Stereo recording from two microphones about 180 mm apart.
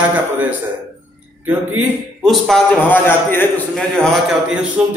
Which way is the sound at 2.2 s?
Centre (ahead or behind).